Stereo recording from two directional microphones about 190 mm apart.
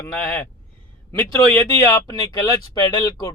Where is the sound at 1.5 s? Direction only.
15° left (ahead or behind).